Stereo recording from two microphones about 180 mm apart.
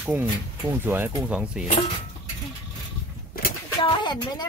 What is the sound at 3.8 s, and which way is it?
Speech, 25° left (ahead or behind).